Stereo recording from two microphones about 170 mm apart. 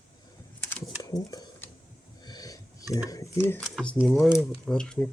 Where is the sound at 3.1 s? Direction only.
15° left (ahead or behind).